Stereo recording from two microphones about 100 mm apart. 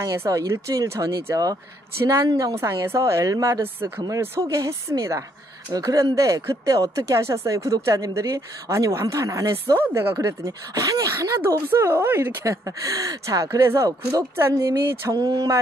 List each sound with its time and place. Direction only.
0.2 s speech: 30° right (ahead or behind)
9.8 s speech: 20° right (ahead or behind)
10.2 s speech: 35° right (ahead or behind)